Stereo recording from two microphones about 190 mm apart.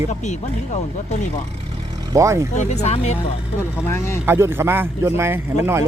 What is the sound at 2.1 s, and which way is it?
Speech, 15° right (ahead or behind).